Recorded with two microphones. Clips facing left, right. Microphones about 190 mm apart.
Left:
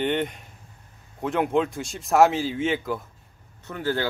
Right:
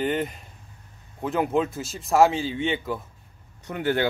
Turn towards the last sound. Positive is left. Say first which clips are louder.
# right 2 dB
turn(degrees=-20)  # may be behind; listen again after turning